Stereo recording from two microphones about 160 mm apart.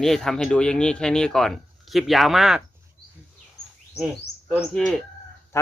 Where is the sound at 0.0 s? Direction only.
Centre (ahead or behind).